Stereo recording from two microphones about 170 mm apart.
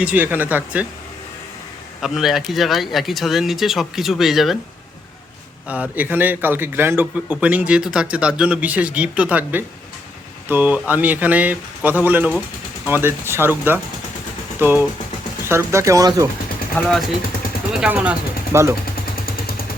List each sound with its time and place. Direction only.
0.0 s a man's voice: 10° right (ahead or behind)
2.0 s speech: centre (ahead or behind)
5.6 s a man's voice: 10° right (ahead or behind)
16.7 s a man's voice: centre (ahead or behind); by 18.7 s 15° right (ahead or behind)